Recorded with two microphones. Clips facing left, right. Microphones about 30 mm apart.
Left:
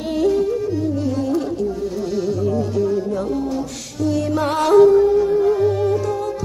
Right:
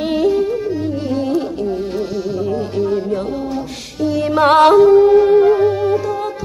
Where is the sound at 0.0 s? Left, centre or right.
Right.